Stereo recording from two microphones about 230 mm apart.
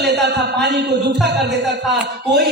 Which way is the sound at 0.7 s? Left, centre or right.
Right.